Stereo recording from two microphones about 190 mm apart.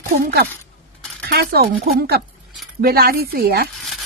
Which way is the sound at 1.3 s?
55° right (ahead or behind).